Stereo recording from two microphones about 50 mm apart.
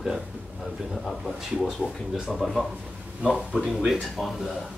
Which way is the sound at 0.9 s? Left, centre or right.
Centre.